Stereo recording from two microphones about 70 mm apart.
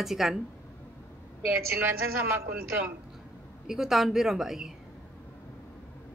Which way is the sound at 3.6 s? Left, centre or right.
Centre.